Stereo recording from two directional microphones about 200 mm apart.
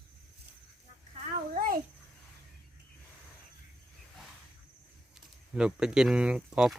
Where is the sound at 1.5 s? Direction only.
45° right (ahead or behind).